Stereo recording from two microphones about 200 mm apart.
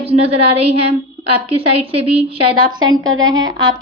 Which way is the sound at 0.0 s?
30° right (ahead or behind).